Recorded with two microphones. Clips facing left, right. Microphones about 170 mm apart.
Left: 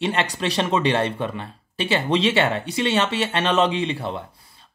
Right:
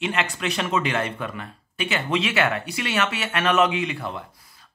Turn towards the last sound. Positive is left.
turn(degrees=30)  # may be behind; listen again after turning